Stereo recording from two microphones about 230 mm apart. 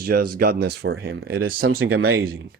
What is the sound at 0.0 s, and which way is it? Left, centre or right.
Speech, right.